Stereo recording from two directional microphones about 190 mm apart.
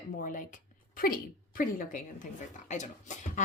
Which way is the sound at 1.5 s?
45° left (ahead or behind).